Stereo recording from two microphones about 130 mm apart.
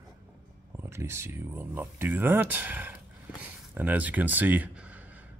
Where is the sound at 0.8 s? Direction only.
20° right (ahead or behind).